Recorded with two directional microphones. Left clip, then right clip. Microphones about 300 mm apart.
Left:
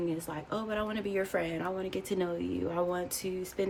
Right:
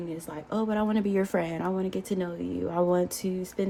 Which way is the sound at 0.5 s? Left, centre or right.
Centre.